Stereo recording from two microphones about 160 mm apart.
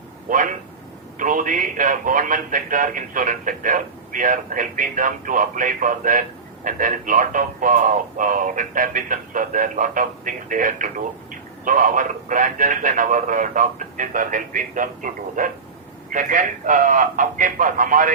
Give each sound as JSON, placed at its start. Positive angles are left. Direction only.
{"t": 0.3, "sound": "speech", "side_deg": -55}